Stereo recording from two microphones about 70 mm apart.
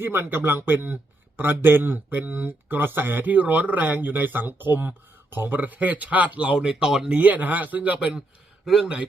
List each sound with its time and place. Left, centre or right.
0.0 s speech: right; by 8.2 s centre
8.6 s speech: centre